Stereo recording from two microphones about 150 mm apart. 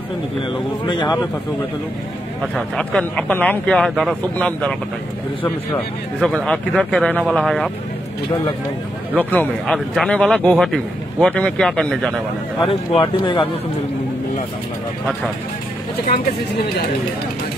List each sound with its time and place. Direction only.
0.8 s speech: 30° left (ahead or behind)
2.5 s speech: 5° left (ahead or behind)
6.2 s a man's voice: 5° left (ahead or behind)
9.1 s a man's voice: 10° left (ahead or behind)
12.6 s speech: 35° left (ahead or behind)